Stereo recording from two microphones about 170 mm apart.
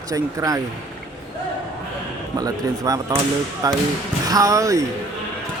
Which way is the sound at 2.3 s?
20° right (ahead or behind).